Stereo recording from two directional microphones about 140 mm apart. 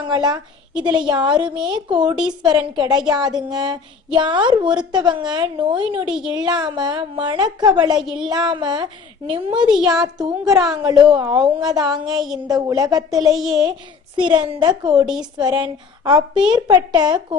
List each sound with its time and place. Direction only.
0.1 s a woman's voice: 30° right (ahead or behind)
2.1 s a woman's voice: 5° right (ahead or behind)
2.5 s a woman's voice: 30° right (ahead or behind)
7.9 s a woman's voice: 5° right (ahead or behind)
8.2 s a woman's voice: 30° right (ahead or behind)
9.7 s a woman's voice: 5° right (ahead or behind)
10.2 s a woman's voice: 30° right (ahead or behind)
15.0 s a woman's voice: 5° right (ahead or behind)
15.4 s a woman's voice: 30° right (ahead or behind)